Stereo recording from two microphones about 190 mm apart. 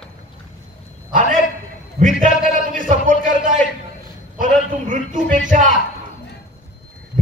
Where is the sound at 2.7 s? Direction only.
45° right (ahead or behind).